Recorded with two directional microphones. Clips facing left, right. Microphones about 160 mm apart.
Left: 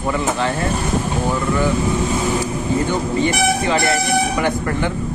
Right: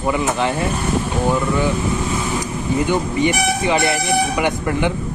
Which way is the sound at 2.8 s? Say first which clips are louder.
Right 3 dB; 15° right (ahead or behind).